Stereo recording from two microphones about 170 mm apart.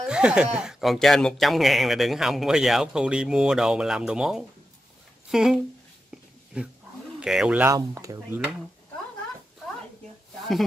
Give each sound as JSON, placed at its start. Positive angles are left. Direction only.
{"t": 0.0, "sound": "speech", "side_deg": -5}
{"t": 7.7, "sound": "speech", "side_deg": -20}